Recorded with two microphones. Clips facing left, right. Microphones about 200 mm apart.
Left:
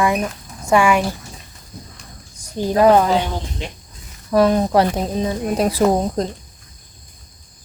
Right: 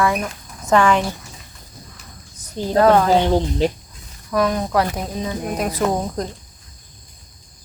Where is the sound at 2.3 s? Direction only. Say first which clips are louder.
Left 1 dB; 10° left (ahead or behind).